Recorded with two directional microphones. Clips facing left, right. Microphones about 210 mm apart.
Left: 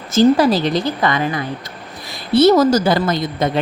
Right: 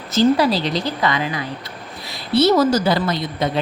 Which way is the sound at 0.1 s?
50° left (ahead or behind).